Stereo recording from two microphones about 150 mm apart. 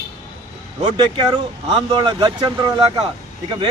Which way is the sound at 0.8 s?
30° right (ahead or behind).